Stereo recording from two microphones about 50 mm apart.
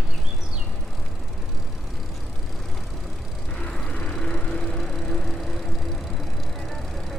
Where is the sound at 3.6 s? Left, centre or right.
Left.